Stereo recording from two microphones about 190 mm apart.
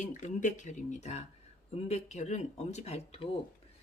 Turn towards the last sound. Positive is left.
turn(degrees=35)  # may be behind; listen again after turning